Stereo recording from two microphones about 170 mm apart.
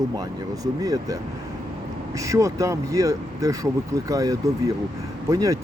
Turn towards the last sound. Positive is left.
turn(degrees=-20)  # may be behind; listen again after turning